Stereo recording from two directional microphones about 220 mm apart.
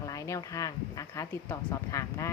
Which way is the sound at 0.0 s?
15° left (ahead or behind).